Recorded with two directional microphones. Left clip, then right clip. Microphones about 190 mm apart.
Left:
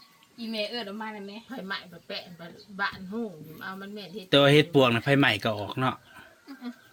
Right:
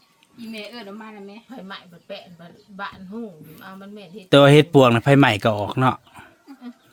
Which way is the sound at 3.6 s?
25° right (ahead or behind).